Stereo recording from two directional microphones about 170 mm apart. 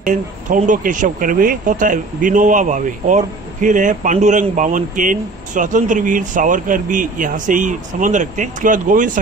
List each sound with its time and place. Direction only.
0.0 s speech: 50° right (ahead or behind)